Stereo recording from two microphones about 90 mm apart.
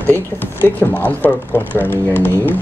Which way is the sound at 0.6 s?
20° left (ahead or behind).